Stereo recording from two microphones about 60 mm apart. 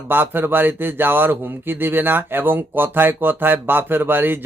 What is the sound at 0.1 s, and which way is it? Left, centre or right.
Speech, right.